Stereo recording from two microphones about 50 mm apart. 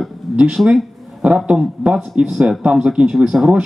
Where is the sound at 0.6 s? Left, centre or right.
Right.